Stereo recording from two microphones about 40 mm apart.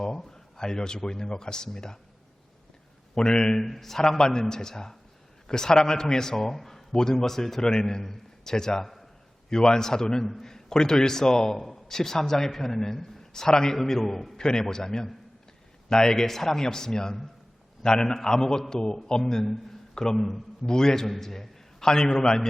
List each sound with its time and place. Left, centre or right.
0.2 s a man's voice: centre
3.2 s a man's voice: centre
3.6 s a man's voice: centre